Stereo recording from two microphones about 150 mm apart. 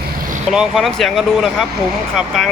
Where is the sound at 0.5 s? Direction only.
Centre (ahead or behind).